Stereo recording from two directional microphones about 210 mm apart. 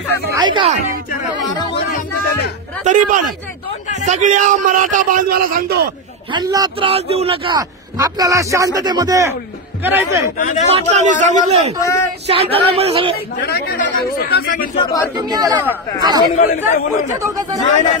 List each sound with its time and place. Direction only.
0.3 s speech: 20° right (ahead or behind)
2.8 s a man's voice: 35° right (ahead or behind)
6.3 s speech: 20° right (ahead or behind)
10.3 s a man's voice: 35° left (ahead or behind)
11.0 s a man's voice: 35° right (ahead or behind)
11.8 s speech: 15° left (ahead or behind)
12.3 s speech: 25° right (ahead or behind)
13.5 s speech: 45° left (ahead or behind)
15.1 s speech: 20° right (ahead or behind)
16.3 s a man's voice: 40° left (ahead or behind)